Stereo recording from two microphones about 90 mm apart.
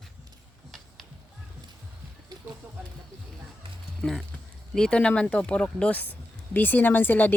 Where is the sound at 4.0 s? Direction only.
Centre (ahead or behind); by 7.3 s 20° left (ahead or behind).